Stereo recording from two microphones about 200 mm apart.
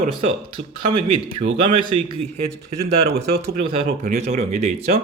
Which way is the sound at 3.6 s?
30° right (ahead or behind).